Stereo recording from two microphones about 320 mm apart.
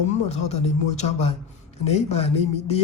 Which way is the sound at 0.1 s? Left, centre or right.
Left.